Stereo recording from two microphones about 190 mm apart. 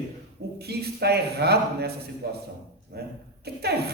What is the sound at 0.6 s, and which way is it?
A man's voice, 55° right (ahead or behind).